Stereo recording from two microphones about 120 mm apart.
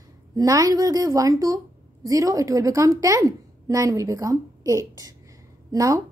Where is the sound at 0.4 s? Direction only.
30° right (ahead or behind).